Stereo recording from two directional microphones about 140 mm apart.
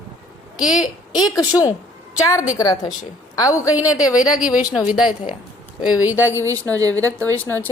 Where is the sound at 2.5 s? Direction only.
25° left (ahead or behind).